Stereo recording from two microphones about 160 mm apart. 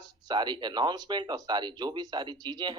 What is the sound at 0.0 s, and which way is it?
Speech, 25° right (ahead or behind).